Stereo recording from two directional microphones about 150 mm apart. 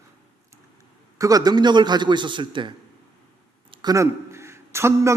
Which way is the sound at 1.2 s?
25° right (ahead or behind).